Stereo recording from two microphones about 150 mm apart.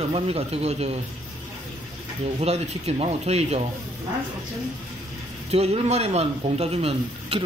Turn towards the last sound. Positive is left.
turn(degrees=-40)  # may be behind; listen again after turning